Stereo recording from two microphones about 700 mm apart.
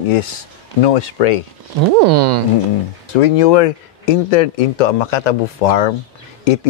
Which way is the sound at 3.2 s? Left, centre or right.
Left.